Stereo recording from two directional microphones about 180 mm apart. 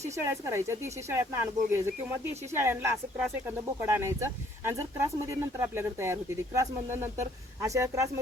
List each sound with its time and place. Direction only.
0.0 s speech: 15° right (ahead or behind)
3.2 s speech: 5° right (ahead or behind)
3.8 s speech: 15° right (ahead or behind)